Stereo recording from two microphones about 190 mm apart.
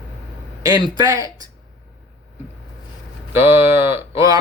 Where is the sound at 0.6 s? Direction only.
20° right (ahead or behind).